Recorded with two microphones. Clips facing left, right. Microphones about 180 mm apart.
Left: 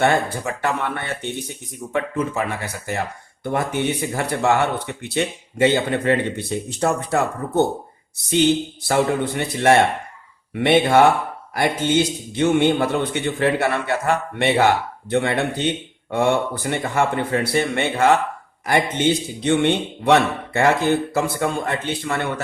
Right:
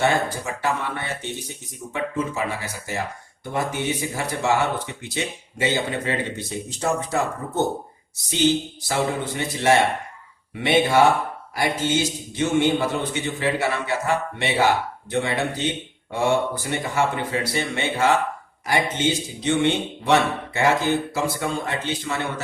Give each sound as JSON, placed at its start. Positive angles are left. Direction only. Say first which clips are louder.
{"t": 0.0, "sound": "a man's voice", "louder": "left 3 dB", "side_deg": 60}
{"t": 16.7, "sound": "a man's voice", "louder": "left 3 dB", "side_deg": 55}